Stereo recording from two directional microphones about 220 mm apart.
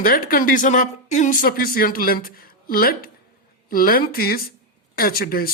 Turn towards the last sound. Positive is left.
turn(degrees=45)  # may be behind; listen again after turning